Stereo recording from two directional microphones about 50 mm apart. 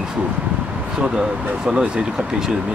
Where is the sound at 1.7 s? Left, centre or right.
Centre.